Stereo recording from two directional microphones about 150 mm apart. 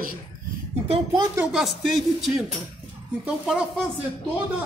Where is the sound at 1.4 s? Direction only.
5° right (ahead or behind).